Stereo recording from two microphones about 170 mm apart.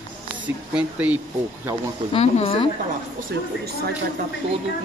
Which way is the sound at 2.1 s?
35° left (ahead or behind).